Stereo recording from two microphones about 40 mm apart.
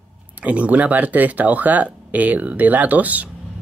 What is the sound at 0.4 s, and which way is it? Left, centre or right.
Speech, right.